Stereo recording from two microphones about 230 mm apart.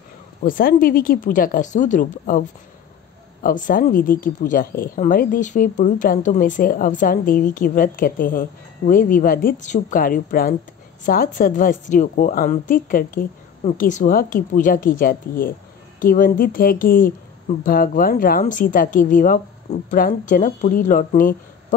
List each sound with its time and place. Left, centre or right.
0.4 s speech: left
3.4 s speech: left